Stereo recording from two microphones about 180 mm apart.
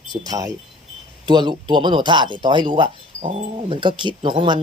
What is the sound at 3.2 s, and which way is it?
Speech, 40° right (ahead or behind).